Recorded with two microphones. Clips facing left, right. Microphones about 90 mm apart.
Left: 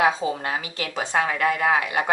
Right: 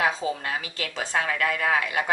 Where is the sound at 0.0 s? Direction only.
25° left (ahead or behind).